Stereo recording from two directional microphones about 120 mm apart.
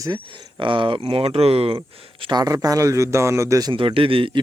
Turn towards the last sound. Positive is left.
turn(degrees=-45)  # may be behind; listen again after turning